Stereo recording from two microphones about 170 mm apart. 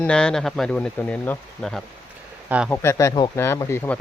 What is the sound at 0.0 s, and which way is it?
Speech, 5° left (ahead or behind).